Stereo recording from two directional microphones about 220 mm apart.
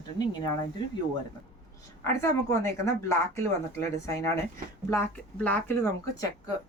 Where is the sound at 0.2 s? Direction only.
20° left (ahead or behind).